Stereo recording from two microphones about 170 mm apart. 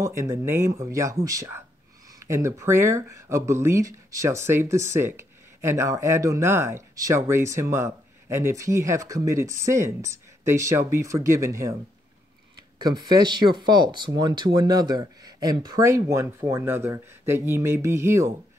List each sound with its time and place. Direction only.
0.0 s speech: 15° right (ahead or behind)
12.8 s speech: 25° right (ahead or behind)